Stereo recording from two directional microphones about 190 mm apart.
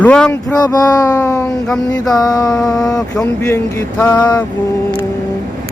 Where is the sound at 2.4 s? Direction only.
Centre (ahead or behind).